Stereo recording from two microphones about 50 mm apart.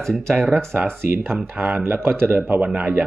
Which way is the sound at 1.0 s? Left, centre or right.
Right.